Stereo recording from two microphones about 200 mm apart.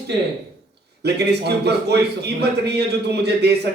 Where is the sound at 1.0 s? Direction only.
55° right (ahead or behind).